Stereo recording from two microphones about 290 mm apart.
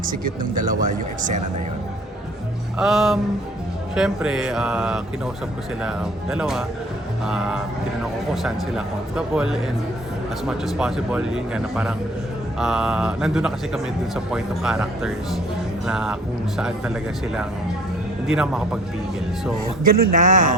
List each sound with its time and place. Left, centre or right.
0.0 s speech: right
2.7 s speech: centre
6.3 s speech: centre
19.8 s a man's voice: right